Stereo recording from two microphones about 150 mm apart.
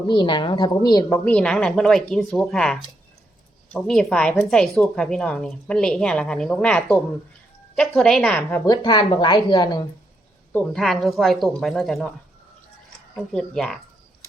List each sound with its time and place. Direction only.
0.1 s speech: 30° left (ahead or behind)
1.2 s a woman's voice: 10° left (ahead or behind)
8.6 s speech: 30° left (ahead or behind)
10.5 s a woman's voice: 5° left (ahead or behind)
13.3 s a woman's voice: 5° left (ahead or behind)